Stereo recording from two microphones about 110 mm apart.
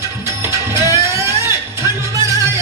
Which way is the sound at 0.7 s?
25° right (ahead or behind).